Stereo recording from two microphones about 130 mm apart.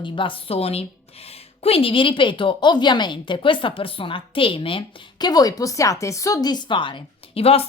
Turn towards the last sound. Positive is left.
turn(degrees=50)  # may be behind; listen again after turning